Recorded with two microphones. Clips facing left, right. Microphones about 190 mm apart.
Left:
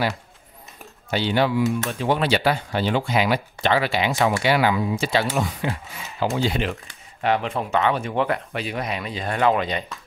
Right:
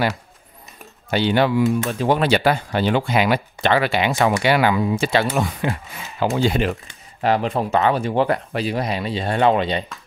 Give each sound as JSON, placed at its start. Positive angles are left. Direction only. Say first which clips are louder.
{"t": 1.1, "sound": "speech", "louder": "right 3 dB", "side_deg": -60}
{"t": 1.7, "sound": "speech", "louder": "right 4 dB", "side_deg": -40}
{"t": 6.3, "sound": "speech", "louder": "right 6 dB", "side_deg": -50}